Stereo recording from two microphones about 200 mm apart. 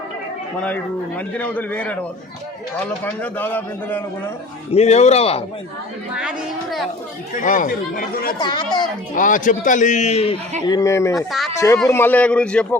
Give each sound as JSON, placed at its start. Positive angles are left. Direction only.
{"t": 0.6, "sound": "a man's voice", "side_deg": 5}
{"t": 4.7, "sound": "a man's voice", "side_deg": 35}
{"t": 6.1, "sound": "speech", "side_deg": 0}
{"t": 7.3, "sound": "speech", "side_deg": 40}
{"t": 8.4, "sound": "speech", "side_deg": 20}
{"t": 9.1, "sound": "a man's voice", "side_deg": 40}
{"t": 10.7, "sound": "a man's voice", "side_deg": 15}
{"t": 11.3, "sound": "speech", "side_deg": 0}
{"t": 11.5, "sound": "a man's voice", "side_deg": 15}